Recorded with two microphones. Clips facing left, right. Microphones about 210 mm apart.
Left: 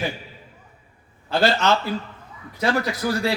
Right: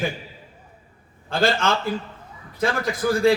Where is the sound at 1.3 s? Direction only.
50° right (ahead or behind).